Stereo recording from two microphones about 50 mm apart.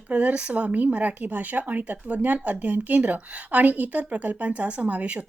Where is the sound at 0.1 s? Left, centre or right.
Right.